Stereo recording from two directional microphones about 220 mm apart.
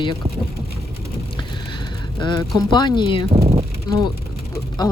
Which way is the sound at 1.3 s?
20° left (ahead or behind).